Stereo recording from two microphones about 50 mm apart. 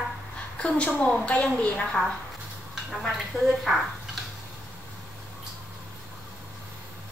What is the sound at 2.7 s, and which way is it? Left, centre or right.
Speech, centre.